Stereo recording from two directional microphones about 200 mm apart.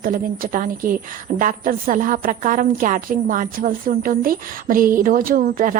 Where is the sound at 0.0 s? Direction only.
45° right (ahead or behind).